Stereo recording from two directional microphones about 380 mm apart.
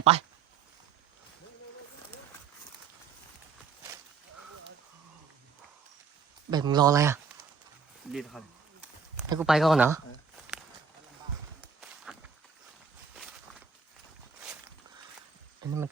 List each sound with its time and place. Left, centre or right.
0.0 s speech: centre
6.5 s speech: centre
12.1 s a sound: centre